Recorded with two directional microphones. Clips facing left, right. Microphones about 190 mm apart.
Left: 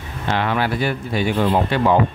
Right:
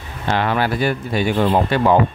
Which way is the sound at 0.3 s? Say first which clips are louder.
Right 2 dB; 40° right (ahead or behind).